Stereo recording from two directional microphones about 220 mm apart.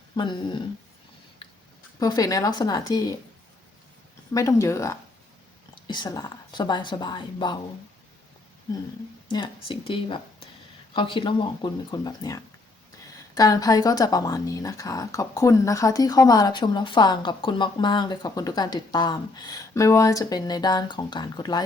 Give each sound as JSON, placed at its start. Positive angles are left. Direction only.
{"t": 0.2, "sound": "a woman's voice", "side_deg": 20}
{"t": 2.0, "sound": "a woman's voice", "side_deg": 15}
{"t": 4.4, "sound": "a woman's voice", "side_deg": 15}
{"t": 9.3, "sound": "a woman's voice", "side_deg": 20}